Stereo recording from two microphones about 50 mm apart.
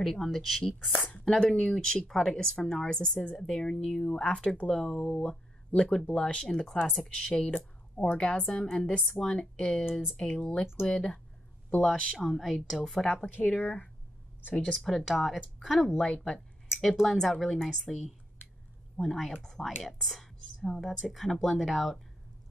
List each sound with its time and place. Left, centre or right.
0.0 s speech: centre
0.9 s a woman's voice: left
1.3 s speech: centre
12.2 s speech: centre
12.8 s speech: centre
13.2 s speech: left
14.5 s speech: centre
16.0 s speech: centre
16.7 s speech: centre